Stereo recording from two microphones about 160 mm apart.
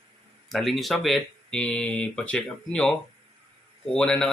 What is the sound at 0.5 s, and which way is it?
Speech, centre (ahead or behind).